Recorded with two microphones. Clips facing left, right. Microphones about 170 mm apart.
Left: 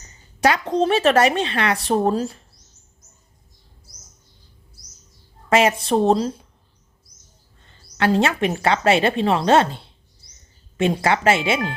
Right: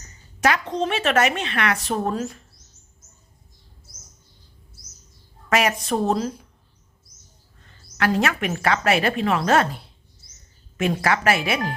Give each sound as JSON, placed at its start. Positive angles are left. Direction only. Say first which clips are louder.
{"t": 0.4, "sound": "speech", "louder": "left 4 dB", "side_deg": 35}
{"t": 5.5, "sound": "a woman's voice", "louder": "left 4 dB", "side_deg": 30}
{"t": 7.9, "sound": "a woman's voice", "louder": "left 3 dB", "side_deg": 30}